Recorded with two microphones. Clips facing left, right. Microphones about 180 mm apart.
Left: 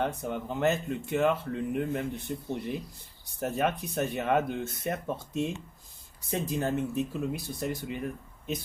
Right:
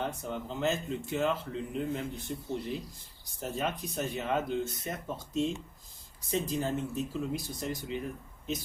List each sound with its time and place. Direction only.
0.0 s speech: 60° left (ahead or behind)
3.4 s speech: 60° left (ahead or behind)